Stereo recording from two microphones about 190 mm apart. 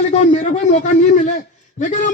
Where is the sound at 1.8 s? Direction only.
40° left (ahead or behind).